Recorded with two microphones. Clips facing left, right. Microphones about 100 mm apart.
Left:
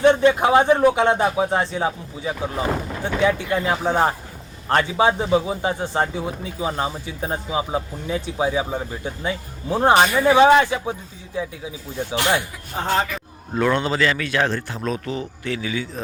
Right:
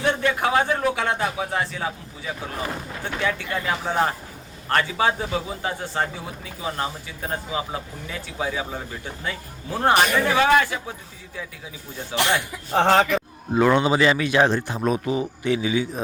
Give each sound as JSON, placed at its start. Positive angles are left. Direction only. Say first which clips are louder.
{"t": 0.0, "sound": "a man's voice", "louder": "left 7 dB", "side_deg": 25}
{"t": 12.7, "sound": "speech", "louder": "right 5 dB", "side_deg": -75}
{"t": 13.5, "sound": "speech", "louder": "right 2 dB", "side_deg": -15}